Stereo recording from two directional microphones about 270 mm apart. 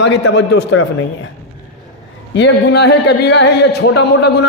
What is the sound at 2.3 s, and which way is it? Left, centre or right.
A man's voice, left.